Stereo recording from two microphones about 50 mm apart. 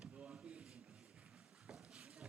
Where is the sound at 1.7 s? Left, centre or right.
Centre.